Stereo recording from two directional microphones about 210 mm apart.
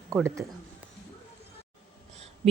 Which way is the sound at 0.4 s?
15° right (ahead or behind).